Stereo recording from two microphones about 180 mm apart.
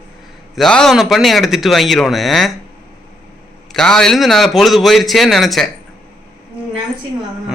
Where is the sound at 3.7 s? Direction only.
5° left (ahead or behind).